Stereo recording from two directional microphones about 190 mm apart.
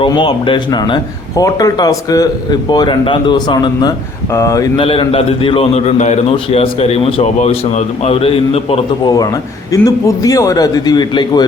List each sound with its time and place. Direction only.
0.0 s speech: 25° left (ahead or behind)
4.8 s a man's voice: 30° left (ahead or behind)
9.7 s speech: 20° left (ahead or behind)